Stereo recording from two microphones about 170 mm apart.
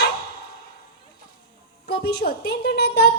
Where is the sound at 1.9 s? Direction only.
70° left (ahead or behind).